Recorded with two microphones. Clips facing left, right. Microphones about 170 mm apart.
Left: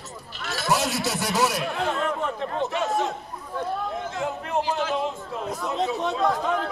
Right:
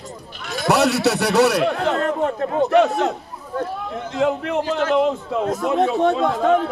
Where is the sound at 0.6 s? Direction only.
70° right (ahead or behind).